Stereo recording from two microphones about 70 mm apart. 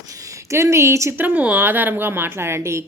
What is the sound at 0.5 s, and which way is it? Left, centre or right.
Speech, right.